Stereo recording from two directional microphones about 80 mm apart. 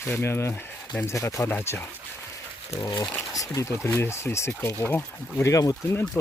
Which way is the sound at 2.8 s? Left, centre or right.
Left.